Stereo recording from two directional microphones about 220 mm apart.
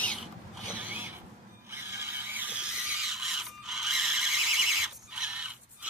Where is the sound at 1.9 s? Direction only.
10° right (ahead or behind).